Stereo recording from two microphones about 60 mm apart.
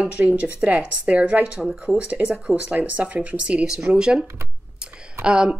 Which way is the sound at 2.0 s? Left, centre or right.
Right.